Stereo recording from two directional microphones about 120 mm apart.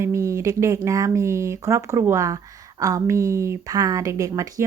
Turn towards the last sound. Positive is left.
turn(degrees=-25)  # may be behind; listen again after turning